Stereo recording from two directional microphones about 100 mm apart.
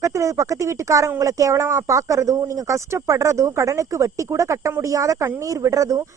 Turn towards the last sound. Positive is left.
turn(degrees=-30)  # may be behind; listen again after turning